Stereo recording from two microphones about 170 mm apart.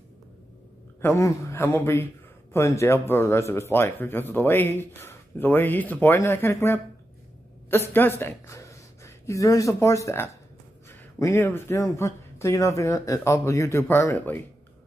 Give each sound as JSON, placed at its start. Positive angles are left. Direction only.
{"t": 1.0, "sound": "a woman's voice", "side_deg": 15}